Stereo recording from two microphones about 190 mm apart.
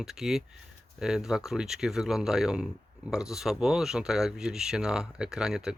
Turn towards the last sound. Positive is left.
turn(degrees=-5)  # may be behind; listen again after turning